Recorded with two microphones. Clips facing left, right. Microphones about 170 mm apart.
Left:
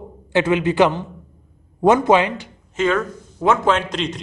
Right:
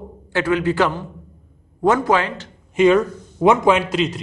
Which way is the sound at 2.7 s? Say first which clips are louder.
Right 6 dB; 15° right (ahead or behind).